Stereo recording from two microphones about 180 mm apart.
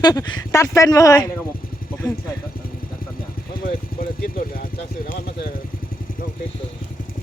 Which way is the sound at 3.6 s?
55° left (ahead or behind).